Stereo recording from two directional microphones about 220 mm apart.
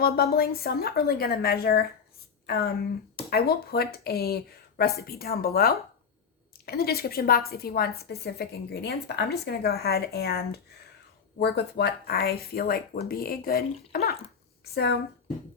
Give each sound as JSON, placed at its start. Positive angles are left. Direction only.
{"t": 0.0, "sound": "a woman's voice", "side_deg": 45}